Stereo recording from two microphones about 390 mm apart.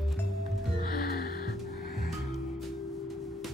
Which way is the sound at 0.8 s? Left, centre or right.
Left.